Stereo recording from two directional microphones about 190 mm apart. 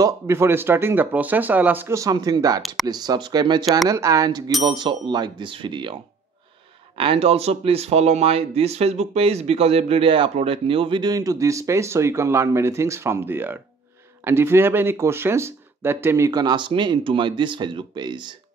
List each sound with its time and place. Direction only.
0.0 s speech: 15° right (ahead or behind)
7.0 s speech: 30° right (ahead or behind)